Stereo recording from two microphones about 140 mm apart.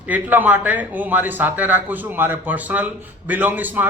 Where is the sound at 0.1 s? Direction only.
10° right (ahead or behind).